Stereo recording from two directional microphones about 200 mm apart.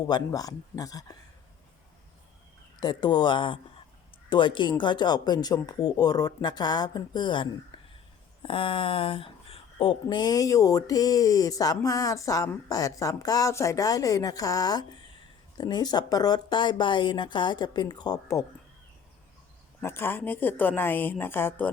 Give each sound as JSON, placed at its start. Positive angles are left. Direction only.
{"t": 0.1, "sound": "speech", "side_deg": 20}
{"t": 2.8, "sound": "speech", "side_deg": 20}
{"t": 19.8, "sound": "speech", "side_deg": 10}